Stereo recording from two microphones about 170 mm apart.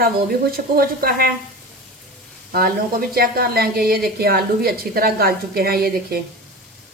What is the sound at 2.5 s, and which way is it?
A woman's voice, 60° right (ahead or behind).